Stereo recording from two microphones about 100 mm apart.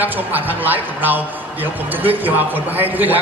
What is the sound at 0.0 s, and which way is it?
A man's voice, 20° right (ahead or behind).